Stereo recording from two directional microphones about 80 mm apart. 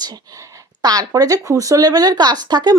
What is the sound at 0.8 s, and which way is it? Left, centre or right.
Speech, right.